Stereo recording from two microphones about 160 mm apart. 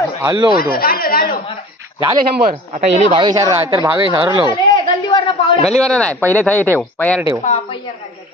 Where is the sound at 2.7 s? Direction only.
45° right (ahead or behind).